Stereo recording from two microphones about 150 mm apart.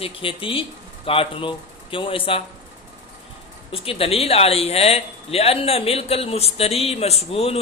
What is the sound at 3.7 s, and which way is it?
Speech, 40° left (ahead or behind).